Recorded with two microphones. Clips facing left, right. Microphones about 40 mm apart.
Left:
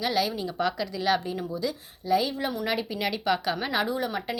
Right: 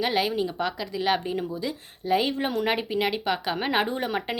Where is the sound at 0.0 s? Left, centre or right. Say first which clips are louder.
Right 2 dB; right.